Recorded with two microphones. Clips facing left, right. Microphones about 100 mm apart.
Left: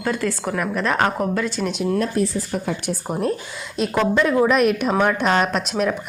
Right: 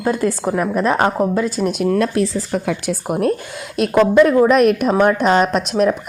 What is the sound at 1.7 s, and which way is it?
Speech, 50° right (ahead or behind).